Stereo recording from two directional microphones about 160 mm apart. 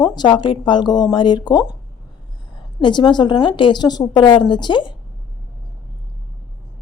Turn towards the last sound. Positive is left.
turn(degrees=30)  # may be behind; listen again after turning